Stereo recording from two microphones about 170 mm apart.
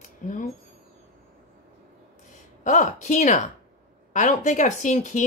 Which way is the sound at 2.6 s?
45° left (ahead or behind).